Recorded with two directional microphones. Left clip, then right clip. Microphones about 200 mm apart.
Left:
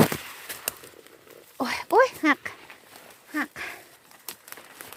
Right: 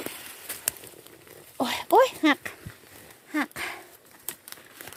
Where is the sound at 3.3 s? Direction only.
10° right (ahead or behind).